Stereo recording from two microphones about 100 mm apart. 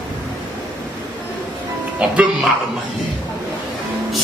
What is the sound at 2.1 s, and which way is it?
Speech, 10° right (ahead or behind).